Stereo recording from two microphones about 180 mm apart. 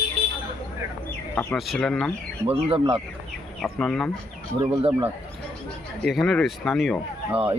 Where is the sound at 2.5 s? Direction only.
30° right (ahead or behind).